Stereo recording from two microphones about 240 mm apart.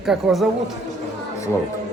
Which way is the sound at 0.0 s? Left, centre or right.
Centre.